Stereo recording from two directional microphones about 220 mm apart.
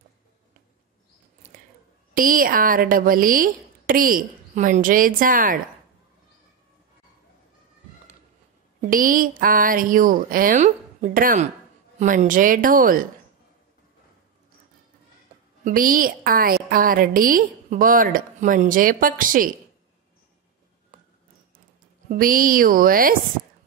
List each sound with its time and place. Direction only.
2.1 s a woman's voice: 40° right (ahead or behind)
8.8 s a woman's voice: 40° right (ahead or behind)
15.6 s a woman's voice: 40° right (ahead or behind)
22.1 s a woman's voice: 40° right (ahead or behind)